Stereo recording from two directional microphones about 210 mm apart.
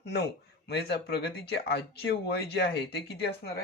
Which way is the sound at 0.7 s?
50° left (ahead or behind).